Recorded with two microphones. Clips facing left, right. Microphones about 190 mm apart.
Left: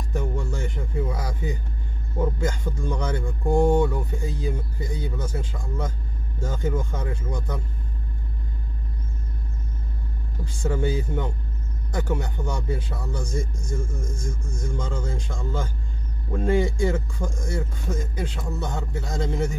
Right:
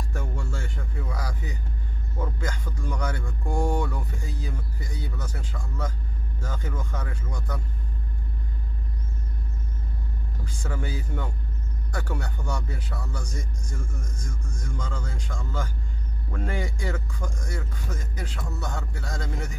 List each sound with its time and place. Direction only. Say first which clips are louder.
0.1 s a sound: left 6 dB; 20° left (ahead or behind)
2.1 s speech: left 7 dB; 25° left (ahead or behind)
10.4 s speech: left 9 dB; 25° left (ahead or behind)